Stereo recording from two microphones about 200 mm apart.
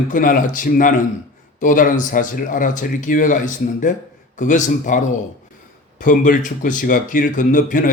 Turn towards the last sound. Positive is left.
turn(degrees=40)  # may be behind; listen again after turning